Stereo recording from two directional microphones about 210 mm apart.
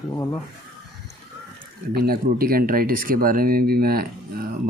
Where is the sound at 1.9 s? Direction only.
45° right (ahead or behind).